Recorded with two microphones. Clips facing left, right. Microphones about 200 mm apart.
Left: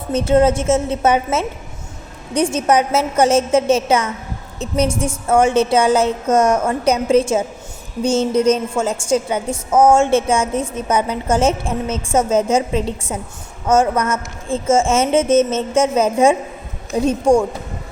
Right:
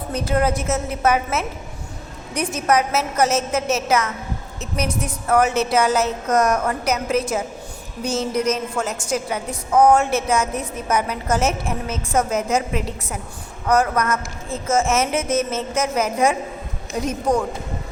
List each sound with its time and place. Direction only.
0.1 s a woman's voice: 25° left (ahead or behind)